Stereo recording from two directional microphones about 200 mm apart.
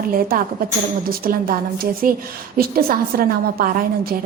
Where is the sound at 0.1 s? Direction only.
45° right (ahead or behind).